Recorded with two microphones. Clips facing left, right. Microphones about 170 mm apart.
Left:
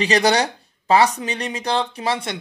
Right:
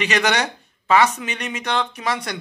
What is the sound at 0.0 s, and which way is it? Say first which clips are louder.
Speech: left 3 dB; 35° left (ahead or behind).